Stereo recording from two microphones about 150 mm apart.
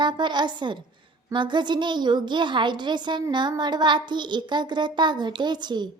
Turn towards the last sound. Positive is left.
turn(degrees=-30)  # may be behind; listen again after turning